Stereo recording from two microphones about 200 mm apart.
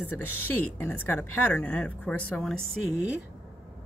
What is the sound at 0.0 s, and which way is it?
Speech, 10° left (ahead or behind).